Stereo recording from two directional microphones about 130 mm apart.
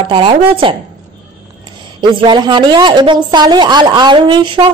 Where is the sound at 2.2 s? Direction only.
35° right (ahead or behind).